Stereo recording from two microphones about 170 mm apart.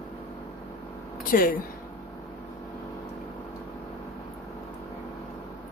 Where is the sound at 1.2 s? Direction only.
55° left (ahead or behind).